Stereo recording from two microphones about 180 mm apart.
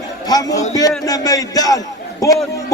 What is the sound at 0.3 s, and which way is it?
A man's voice, 20° left (ahead or behind).